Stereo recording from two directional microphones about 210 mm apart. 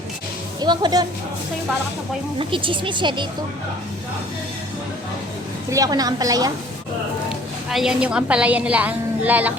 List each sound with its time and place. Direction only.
0.6 s speech: 20° right (ahead or behind)
2.4 s speech: 25° right (ahead or behind)
5.7 s a woman's voice: 15° right (ahead or behind)
7.3 s a woman's voice: centre (ahead or behind)